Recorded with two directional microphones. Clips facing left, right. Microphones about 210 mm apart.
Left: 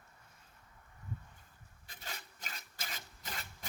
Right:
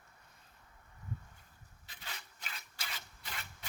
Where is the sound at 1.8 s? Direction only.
45° left (ahead or behind).